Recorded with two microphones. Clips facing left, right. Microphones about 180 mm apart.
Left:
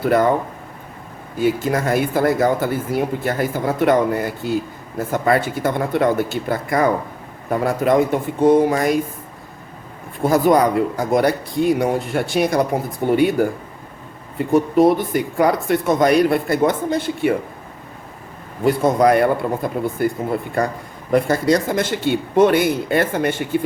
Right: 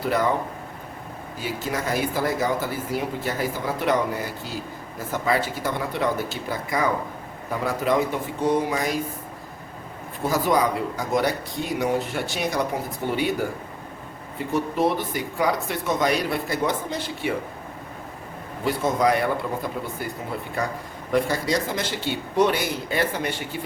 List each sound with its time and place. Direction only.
0.0 s speech: 55° left (ahead or behind)
1.4 s speech: 55° left (ahead or behind)
10.2 s speech: 55° left (ahead or behind)
18.6 s speech: 50° left (ahead or behind)